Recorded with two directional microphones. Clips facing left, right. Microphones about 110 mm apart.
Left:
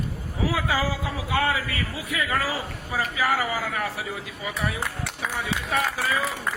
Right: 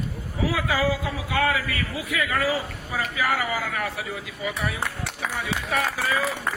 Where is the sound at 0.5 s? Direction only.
30° left (ahead or behind).